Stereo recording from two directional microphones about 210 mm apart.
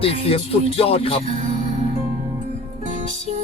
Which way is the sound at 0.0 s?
25° left (ahead or behind).